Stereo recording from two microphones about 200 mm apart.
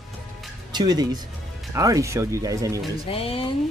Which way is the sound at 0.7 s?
20° right (ahead or behind).